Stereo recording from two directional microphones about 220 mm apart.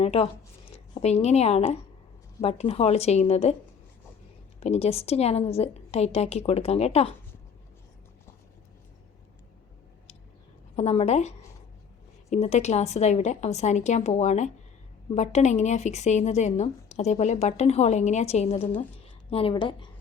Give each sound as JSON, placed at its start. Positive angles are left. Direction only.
{"t": 0.0, "sound": "a woman's voice", "side_deg": 30}
{"t": 4.6, "sound": "a woman's voice", "side_deg": 30}
{"t": 10.8, "sound": "a woman's voice", "side_deg": 30}